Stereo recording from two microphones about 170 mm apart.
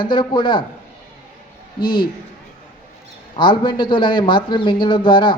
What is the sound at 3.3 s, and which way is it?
Speech, 30° left (ahead or behind).